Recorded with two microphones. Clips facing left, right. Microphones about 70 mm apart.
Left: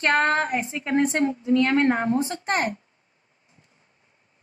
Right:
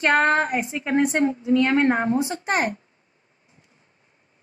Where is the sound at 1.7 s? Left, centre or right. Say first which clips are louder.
Right 1 dB; right.